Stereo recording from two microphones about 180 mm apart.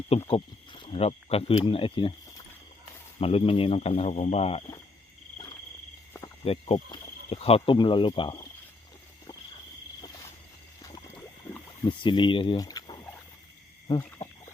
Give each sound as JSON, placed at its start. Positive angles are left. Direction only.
{"t": 0.3, "sound": "speech", "side_deg": 30}
{"t": 3.2, "sound": "speech", "side_deg": 30}
{"t": 6.4, "sound": "speech", "side_deg": 35}
{"t": 11.9, "sound": "speech", "side_deg": 25}